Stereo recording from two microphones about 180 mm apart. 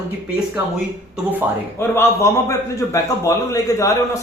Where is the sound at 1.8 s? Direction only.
15° left (ahead or behind).